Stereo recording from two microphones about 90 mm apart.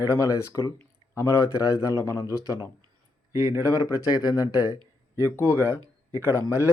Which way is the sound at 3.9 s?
45° left (ahead or behind).